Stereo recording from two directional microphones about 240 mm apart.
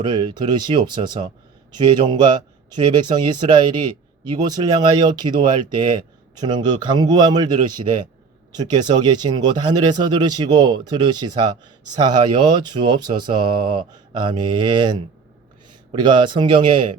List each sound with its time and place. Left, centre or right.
0.0 s speech: centre